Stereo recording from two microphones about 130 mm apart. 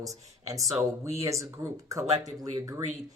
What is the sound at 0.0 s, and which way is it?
Speech, 25° right (ahead or behind).